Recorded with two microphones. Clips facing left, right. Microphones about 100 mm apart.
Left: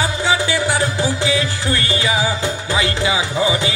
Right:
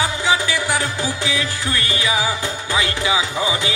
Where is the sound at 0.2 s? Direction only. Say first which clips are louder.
Left 2 dB; 20° left (ahead or behind).